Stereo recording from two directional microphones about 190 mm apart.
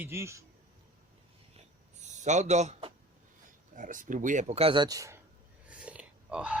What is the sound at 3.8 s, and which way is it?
Speech, 45° right (ahead or behind).